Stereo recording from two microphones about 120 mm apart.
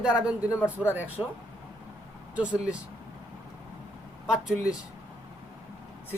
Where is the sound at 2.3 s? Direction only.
10° right (ahead or behind).